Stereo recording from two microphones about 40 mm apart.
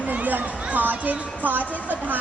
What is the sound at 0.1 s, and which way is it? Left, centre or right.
Speech, right.